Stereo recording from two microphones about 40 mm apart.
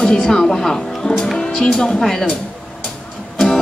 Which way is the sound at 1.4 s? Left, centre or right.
Centre.